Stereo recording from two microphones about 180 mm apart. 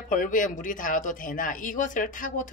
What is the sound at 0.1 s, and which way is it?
Speech, 45° left (ahead or behind).